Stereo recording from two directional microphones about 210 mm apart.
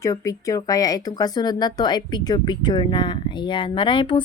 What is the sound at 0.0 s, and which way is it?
A woman's voice, 15° left (ahead or behind).